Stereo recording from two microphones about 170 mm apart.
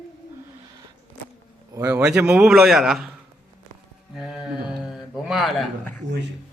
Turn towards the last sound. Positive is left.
turn(degrees=-90)